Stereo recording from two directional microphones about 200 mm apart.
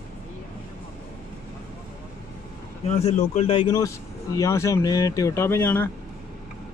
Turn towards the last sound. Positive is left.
turn(degrees=10)  # may be behind; listen again after turning